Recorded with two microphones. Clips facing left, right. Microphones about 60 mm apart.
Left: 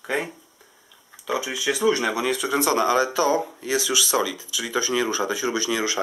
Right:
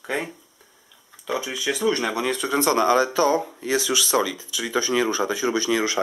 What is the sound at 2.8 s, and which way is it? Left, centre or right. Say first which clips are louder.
Speech: right 2 dB; right.